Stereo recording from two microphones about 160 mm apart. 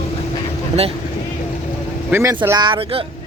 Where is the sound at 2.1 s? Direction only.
15° right (ahead or behind); by 3.0 s 35° right (ahead or behind).